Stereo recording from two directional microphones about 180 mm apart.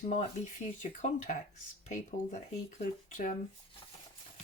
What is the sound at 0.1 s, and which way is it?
Speech, 40° left (ahead or behind).